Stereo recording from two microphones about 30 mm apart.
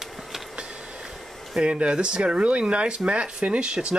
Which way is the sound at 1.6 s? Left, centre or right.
Right.